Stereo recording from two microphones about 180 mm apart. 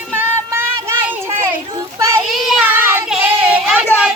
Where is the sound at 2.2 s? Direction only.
Centre (ahead or behind).